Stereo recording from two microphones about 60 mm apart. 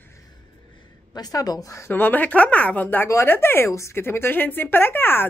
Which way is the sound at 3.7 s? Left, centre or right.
Left.